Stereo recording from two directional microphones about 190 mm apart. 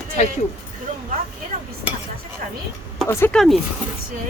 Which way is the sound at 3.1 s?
15° left (ahead or behind).